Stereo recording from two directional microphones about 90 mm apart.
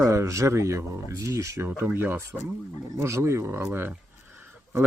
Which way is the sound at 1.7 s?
25° right (ahead or behind).